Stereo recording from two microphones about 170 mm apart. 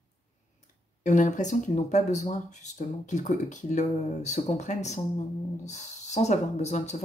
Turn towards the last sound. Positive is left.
turn(degrees=40)  # may be behind; listen again after turning